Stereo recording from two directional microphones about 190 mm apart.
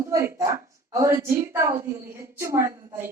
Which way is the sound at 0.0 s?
15° right (ahead or behind).